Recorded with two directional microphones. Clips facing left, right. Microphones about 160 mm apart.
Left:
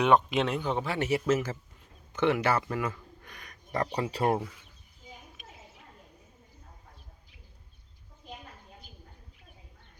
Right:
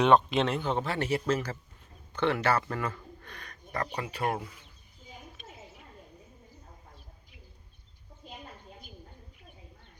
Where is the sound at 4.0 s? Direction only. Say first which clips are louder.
Left 5 dB; 35° left (ahead or behind).